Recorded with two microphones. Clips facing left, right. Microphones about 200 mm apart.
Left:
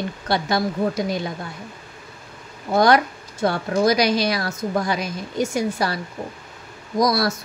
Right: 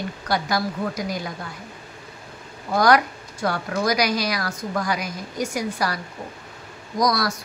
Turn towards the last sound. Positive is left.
turn(degrees=25)  # may be behind; listen again after turning